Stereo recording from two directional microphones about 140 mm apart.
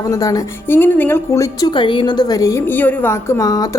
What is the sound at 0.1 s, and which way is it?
A woman's voice, 25° left (ahead or behind).